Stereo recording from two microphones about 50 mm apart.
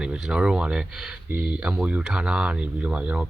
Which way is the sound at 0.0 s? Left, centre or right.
Centre.